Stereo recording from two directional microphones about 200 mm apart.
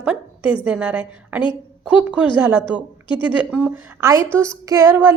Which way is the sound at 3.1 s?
25° left (ahead or behind).